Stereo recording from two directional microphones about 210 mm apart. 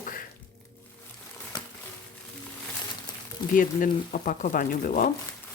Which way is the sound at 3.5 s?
40° left (ahead or behind).